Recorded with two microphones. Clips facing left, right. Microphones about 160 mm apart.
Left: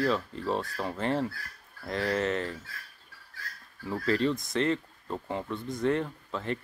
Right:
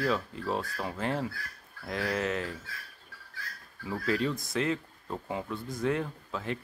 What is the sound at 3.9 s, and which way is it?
Speech, 5° right (ahead or behind).